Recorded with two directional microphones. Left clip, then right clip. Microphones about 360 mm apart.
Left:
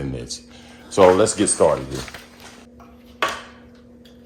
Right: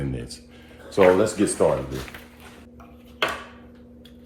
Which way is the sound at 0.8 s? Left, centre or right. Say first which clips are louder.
Left 4 dB; left.